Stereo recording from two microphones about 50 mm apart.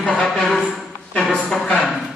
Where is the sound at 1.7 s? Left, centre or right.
Centre.